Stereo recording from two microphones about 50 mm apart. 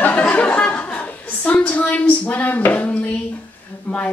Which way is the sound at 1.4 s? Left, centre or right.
Left.